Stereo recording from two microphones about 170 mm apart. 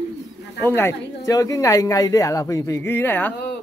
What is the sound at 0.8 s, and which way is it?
Speech, 20° left (ahead or behind).